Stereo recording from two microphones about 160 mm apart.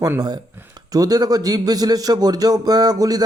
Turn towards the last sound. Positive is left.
turn(degrees=-25)  # may be behind; listen again after turning